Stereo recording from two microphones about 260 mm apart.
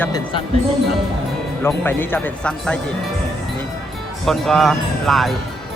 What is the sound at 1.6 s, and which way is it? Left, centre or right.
Speech, centre.